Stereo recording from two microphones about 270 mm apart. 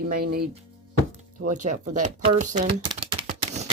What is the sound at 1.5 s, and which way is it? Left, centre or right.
Speech, right.